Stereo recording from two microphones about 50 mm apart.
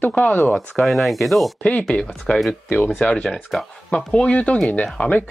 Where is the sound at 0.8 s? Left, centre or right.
Centre.